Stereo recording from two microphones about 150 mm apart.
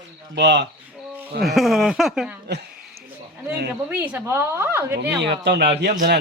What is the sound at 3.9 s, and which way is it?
A woman's voice, 10° right (ahead or behind).